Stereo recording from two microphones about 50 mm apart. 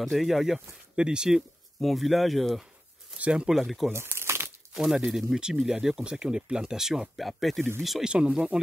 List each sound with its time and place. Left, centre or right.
0.0 s speech: centre
0.9 s speech: centre
1.8 s speech: centre
3.2 s speech: right
3.4 s speech: centre
3.9 s crumpling: right
4.7 s speech: centre
8.0 s speech: centre